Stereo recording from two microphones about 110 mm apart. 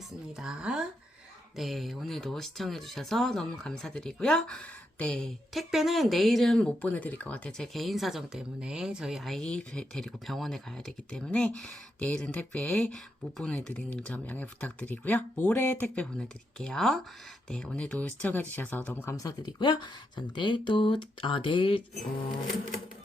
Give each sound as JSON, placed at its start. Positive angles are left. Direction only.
{"t": 0.3, "sound": "speech", "side_deg": -5}
{"t": 19.1, "sound": "speech", "side_deg": 35}
{"t": 19.5, "sound": "speech", "side_deg": 45}